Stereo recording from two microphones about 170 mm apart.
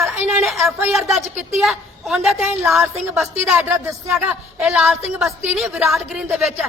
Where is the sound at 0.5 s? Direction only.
15° right (ahead or behind).